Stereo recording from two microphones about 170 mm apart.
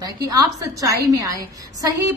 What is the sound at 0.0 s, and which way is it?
A woman's voice, 20° right (ahead or behind).